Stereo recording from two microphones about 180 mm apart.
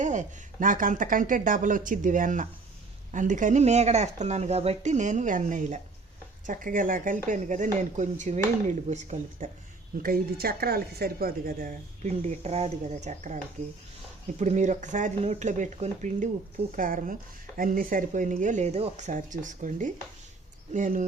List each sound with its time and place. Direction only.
0.0 s speech: 45° right (ahead or behind)
10.0 s speech: 55° right (ahead or behind)